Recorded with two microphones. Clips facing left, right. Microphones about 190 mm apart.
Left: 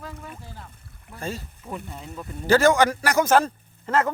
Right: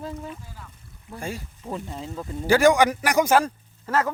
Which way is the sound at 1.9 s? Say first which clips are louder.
Right 4 dB; 25° right (ahead or behind).